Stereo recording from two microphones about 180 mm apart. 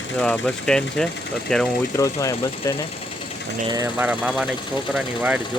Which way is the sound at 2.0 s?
15° left (ahead or behind).